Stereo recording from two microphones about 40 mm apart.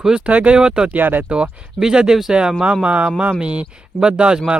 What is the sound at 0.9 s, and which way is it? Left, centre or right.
Speech, right.